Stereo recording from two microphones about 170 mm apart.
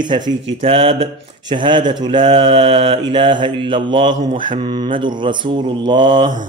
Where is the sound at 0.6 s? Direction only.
35° right (ahead or behind).